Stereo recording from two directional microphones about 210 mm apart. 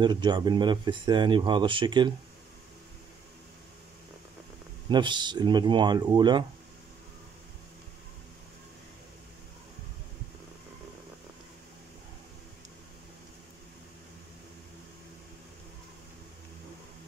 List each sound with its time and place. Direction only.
0.0 s speech: 20° right (ahead or behind)
4.8 s speech: 20° right (ahead or behind)